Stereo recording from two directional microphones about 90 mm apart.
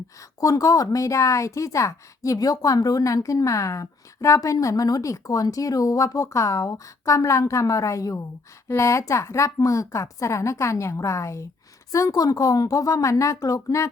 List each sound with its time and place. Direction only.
0.3 s speech: 40° left (ahead or behind)